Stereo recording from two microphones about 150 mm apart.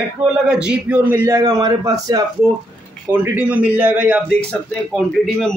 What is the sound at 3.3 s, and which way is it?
Speech, 10° right (ahead or behind).